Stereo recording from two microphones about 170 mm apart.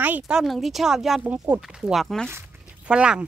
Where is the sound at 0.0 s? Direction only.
10° right (ahead or behind).